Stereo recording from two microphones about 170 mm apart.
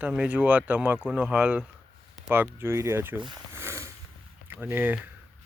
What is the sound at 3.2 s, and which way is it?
Speech, 25° right (ahead or behind).